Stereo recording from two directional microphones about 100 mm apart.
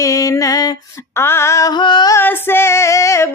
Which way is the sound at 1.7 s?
50° left (ahead or behind).